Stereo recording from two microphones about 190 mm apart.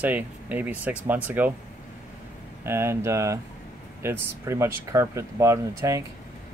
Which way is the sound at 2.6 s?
15° right (ahead or behind).